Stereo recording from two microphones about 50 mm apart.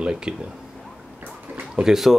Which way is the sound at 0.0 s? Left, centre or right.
Centre.